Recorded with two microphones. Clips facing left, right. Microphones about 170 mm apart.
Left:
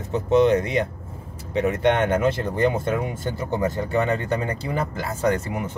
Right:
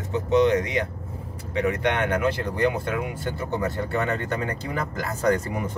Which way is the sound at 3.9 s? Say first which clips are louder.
Left 3 dB; 15° left (ahead or behind).